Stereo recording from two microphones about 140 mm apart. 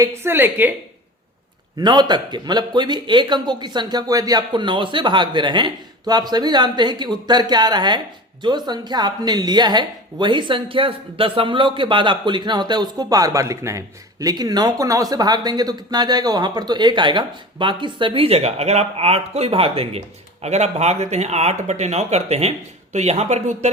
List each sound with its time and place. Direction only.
0.0 s a woman's voice: 20° right (ahead or behind)
1.8 s a man's voice: 30° right (ahead or behind); by 23.6 s 55° right (ahead or behind)